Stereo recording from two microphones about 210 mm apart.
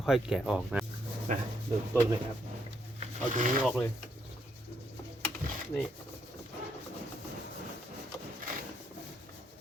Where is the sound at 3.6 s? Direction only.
10° left (ahead or behind).